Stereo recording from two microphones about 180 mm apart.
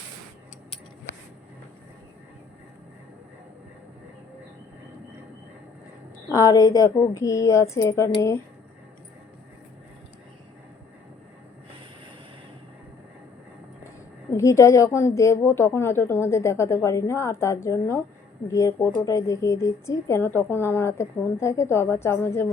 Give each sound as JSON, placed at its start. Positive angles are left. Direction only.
{"t": 6.3, "sound": "speech", "side_deg": 20}
{"t": 14.3, "sound": "speech", "side_deg": 15}